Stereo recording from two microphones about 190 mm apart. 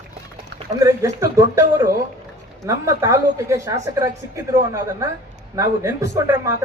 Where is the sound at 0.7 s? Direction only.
15° right (ahead or behind).